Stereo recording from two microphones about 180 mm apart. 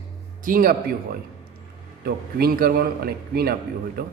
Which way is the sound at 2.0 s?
55° right (ahead or behind).